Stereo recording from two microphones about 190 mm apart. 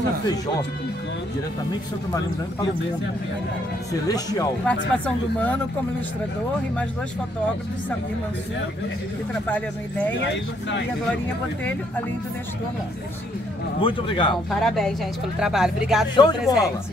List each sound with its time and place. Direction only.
4.1 s speech: 20° left (ahead or behind)
4.6 s speech: 5° left (ahead or behind)
9.5 s speech: 10° left (ahead or behind)
13.7 s speech: 25° left (ahead or behind)
14.5 s a woman's voice: centre (ahead or behind)
16.2 s speech: 20° left (ahead or behind)